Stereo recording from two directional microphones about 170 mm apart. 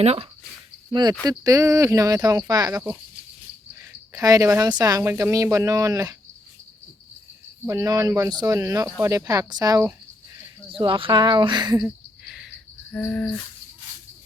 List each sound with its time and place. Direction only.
0.0 s speech: 35° right (ahead or behind)
0.9 s speech: 25° right (ahead or behind)
7.6 s speech: 20° right (ahead or behind)
10.7 s speech: 30° right (ahead or behind)
11.8 s a sound: 5° right (ahead or behind)
12.9 s insect: 5° left (ahead or behind)